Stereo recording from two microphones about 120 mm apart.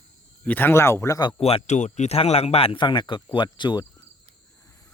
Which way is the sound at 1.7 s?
75° left (ahead or behind).